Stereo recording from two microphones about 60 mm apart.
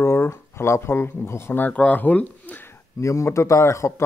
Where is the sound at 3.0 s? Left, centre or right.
Left.